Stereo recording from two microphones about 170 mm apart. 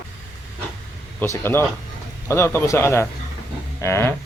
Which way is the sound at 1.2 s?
15° left (ahead or behind).